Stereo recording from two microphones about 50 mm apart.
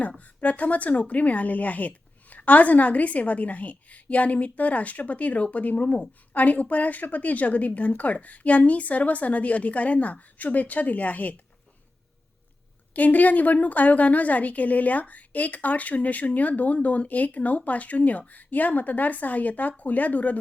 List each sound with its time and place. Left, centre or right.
0.3 s speech: left
12.9 s speech: left